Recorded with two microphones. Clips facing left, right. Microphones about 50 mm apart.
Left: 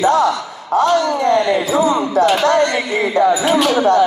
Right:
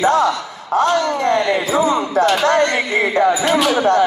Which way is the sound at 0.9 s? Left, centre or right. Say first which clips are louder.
Left 2 dB; right.